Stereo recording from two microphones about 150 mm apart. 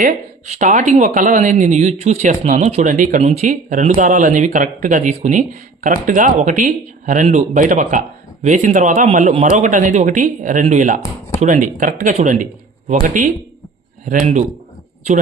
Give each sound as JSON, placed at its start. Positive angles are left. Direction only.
{"t": 0.0, "sound": "speech", "side_deg": -50}